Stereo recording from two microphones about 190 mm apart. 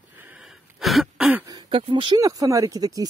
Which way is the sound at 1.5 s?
25° right (ahead or behind).